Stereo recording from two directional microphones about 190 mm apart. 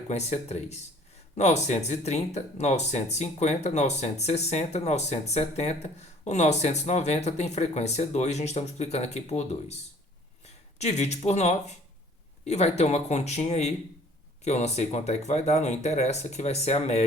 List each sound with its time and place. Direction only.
0.1 s speech: 35° left (ahead or behind)